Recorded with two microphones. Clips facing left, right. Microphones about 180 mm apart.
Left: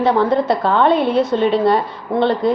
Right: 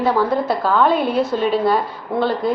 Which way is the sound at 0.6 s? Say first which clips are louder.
Left 1 dB; 25° left (ahead or behind).